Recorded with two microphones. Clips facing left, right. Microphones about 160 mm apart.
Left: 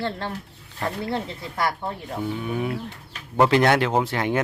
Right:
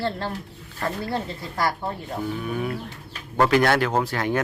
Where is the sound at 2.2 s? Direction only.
20° left (ahead or behind).